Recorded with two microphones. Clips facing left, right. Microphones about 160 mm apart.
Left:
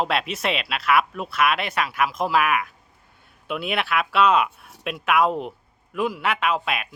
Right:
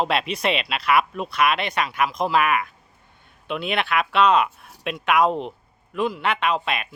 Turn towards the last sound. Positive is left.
turn(degrees=5)  # may be behind; listen again after turning